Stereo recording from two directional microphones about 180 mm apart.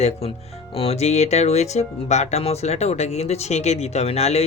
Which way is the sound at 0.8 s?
35° left (ahead or behind).